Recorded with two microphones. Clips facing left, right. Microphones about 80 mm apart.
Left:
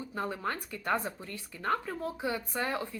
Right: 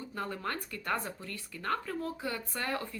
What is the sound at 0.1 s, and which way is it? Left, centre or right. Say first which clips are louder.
A woman's voice: left 2 dB; centre.